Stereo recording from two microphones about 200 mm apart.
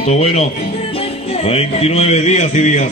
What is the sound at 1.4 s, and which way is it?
A man's voice, 30° left (ahead or behind).